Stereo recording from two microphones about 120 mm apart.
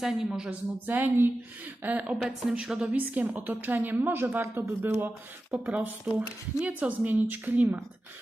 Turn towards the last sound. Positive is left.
turn(degrees=-15)  # may be behind; listen again after turning